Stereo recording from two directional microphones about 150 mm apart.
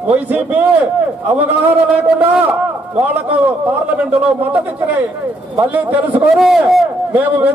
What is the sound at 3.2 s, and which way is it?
Speech, 10° right (ahead or behind).